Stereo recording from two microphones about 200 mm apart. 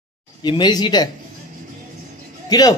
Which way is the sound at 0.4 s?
20° left (ahead or behind).